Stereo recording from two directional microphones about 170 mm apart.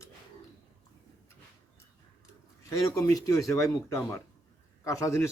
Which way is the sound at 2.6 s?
20° left (ahead or behind).